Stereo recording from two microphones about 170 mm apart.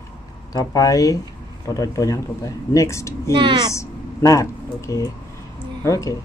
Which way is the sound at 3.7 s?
20° left (ahead or behind).